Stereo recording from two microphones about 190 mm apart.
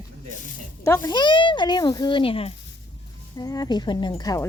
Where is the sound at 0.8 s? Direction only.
20° left (ahead or behind).